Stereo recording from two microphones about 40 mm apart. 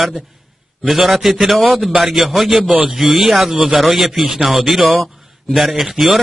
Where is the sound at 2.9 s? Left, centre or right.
Centre.